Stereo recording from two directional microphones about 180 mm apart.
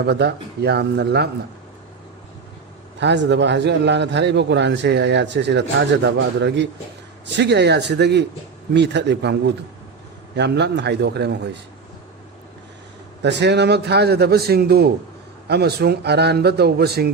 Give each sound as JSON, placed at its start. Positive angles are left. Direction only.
{"t": 0.0, "sound": "speech", "side_deg": -65}
{"t": 3.0, "sound": "a man's voice", "side_deg": -75}
{"t": 10.3, "sound": "a man's voice", "side_deg": -75}
{"t": 13.2, "sound": "speech", "side_deg": -70}